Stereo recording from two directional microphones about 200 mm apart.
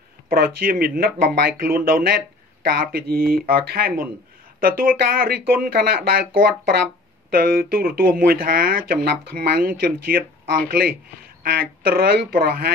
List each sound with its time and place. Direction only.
0.3 s speech: 45° right (ahead or behind)